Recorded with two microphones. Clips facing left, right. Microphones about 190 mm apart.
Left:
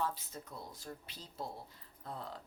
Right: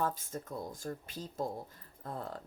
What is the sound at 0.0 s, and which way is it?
Speech, 50° right (ahead or behind).